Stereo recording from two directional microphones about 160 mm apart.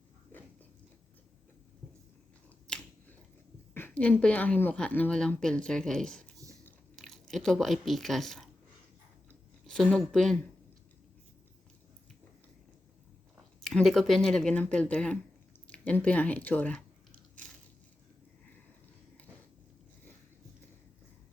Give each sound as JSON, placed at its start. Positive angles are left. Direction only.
{"t": 2.7, "sound": "finger snapping", "side_deg": 5}
{"t": 3.8, "sound": "speech", "side_deg": 10}
{"t": 6.3, "sound": "a sound", "side_deg": -20}
{"t": 6.7, "sound": "speech", "side_deg": 0}
{"t": 9.6, "sound": "speech", "side_deg": 5}
{"t": 13.7, "sound": "speech", "side_deg": 0}